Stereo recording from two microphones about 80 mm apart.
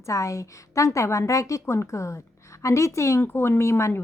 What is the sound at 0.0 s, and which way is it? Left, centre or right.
A woman's voice, left.